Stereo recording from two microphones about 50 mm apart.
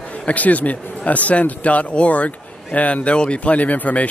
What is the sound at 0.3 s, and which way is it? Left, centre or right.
A man's voice, left.